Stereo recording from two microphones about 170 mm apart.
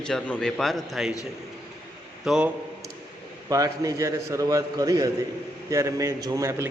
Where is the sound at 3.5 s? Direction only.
20° right (ahead or behind).